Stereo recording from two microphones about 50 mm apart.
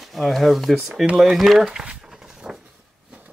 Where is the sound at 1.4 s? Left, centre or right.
Centre.